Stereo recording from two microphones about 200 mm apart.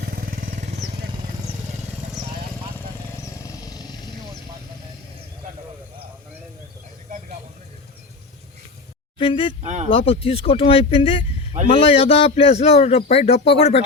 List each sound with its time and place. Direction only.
0.2 s vehicle: 45° right (ahead or behind)
3.3 s vehicle: 15° left (ahead or behind)
9.1 s speech: 25° left (ahead or behind)
9.6 s speech: 35° right (ahead or behind)
9.9 s a man's voice: 25° left (ahead or behind)